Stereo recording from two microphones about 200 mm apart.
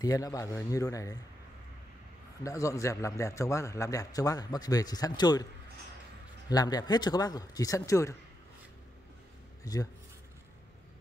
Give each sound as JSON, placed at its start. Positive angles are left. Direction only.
{"t": 0.0, "sound": "a man's voice", "side_deg": 20}
{"t": 2.4, "sound": "a man's voice", "side_deg": 15}
{"t": 6.5, "sound": "speech", "side_deg": 20}
{"t": 9.6, "sound": "a sound", "side_deg": 15}